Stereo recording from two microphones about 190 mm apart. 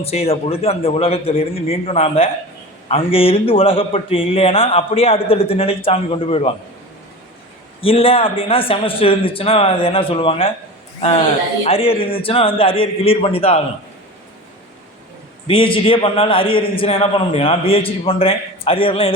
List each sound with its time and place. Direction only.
0.0 s a man's voice: 30° left (ahead or behind)
7.8 s a man's voice: 30° left (ahead or behind)
15.4 s a man's voice: 25° left (ahead or behind)